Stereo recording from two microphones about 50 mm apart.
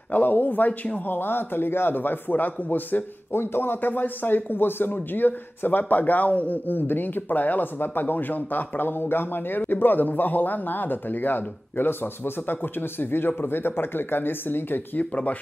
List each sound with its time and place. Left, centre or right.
0.1 s speech: left
1.1 s a man's voice: left
3.3 s a man's voice: left
15.0 s speech: left